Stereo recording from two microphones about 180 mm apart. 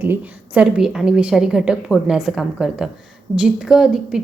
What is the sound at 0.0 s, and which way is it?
A woman's voice, 10° right (ahead or behind).